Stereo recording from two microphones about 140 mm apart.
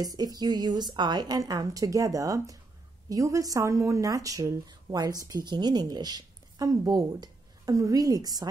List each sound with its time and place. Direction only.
0.0 s speech: 25° right (ahead or behind)